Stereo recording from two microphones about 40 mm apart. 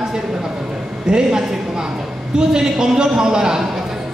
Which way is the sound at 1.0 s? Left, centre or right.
Centre.